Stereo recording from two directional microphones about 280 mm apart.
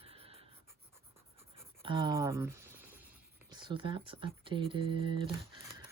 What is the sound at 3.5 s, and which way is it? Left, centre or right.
Speech, centre.